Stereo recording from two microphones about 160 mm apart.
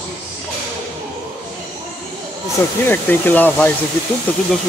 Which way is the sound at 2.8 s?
10° left (ahead or behind).